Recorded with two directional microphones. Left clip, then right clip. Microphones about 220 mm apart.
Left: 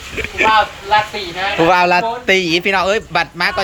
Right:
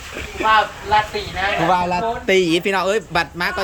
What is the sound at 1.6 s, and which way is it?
Speech, 35° left (ahead or behind).